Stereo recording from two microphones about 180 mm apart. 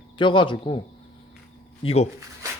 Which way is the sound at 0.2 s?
25° left (ahead or behind).